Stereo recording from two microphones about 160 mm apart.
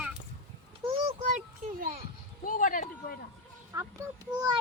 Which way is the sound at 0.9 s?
45° right (ahead or behind).